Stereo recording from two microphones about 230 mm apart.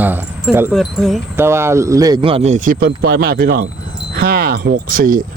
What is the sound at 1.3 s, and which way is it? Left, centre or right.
Speech, centre.